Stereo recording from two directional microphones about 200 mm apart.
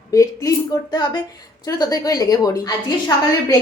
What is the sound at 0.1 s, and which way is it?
Speech, 15° left (ahead or behind).